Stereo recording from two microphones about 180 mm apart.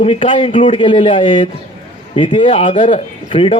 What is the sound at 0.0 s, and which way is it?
A man's voice, 30° left (ahead or behind).